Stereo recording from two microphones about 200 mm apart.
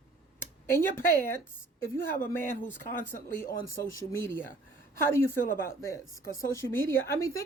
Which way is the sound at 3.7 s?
15° left (ahead or behind).